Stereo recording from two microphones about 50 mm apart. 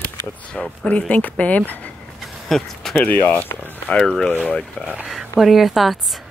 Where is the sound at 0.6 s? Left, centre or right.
Left.